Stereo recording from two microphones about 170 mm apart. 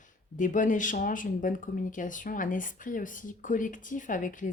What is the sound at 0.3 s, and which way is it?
Speech, 50° left (ahead or behind).